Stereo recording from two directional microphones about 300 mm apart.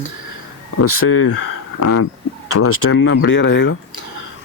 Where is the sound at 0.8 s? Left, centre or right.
Left.